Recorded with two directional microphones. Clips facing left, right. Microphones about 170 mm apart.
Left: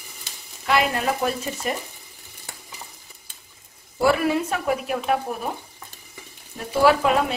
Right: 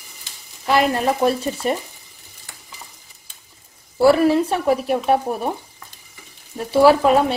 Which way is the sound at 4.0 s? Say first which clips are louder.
Right 6 dB; 35° right (ahead or behind).